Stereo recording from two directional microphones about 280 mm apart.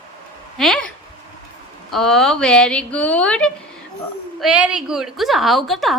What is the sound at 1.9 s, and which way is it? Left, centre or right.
A woman's voice, centre.